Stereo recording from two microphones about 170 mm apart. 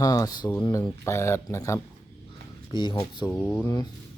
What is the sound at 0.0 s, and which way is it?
Speech, 20° left (ahead or behind).